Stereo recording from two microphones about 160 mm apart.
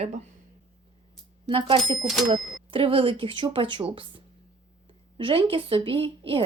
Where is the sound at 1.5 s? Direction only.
30° right (ahead or behind).